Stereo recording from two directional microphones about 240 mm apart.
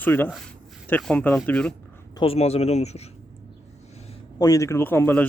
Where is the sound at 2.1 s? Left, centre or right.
Left.